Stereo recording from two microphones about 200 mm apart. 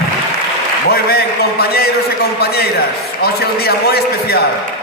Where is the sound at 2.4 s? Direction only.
50° left (ahead or behind).